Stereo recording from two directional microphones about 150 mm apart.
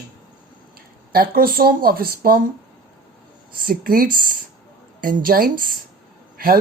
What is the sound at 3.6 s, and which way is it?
Speech, 75° right (ahead or behind).